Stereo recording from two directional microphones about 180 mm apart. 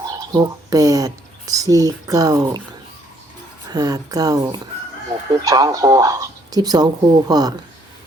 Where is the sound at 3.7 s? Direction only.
20° right (ahead or behind).